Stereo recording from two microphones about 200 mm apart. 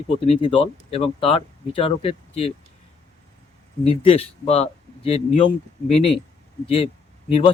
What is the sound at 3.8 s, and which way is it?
Speech, 30° left (ahead or behind).